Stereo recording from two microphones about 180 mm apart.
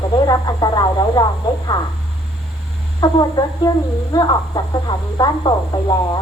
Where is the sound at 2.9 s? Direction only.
20° left (ahead or behind).